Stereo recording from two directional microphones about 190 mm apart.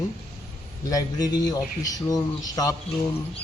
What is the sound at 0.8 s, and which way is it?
A man's voice, 20° left (ahead or behind).